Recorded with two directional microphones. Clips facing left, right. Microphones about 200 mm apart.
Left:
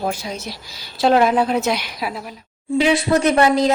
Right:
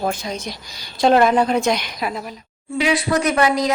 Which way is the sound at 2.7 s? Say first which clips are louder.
Left 3 dB; 25° left (ahead or behind).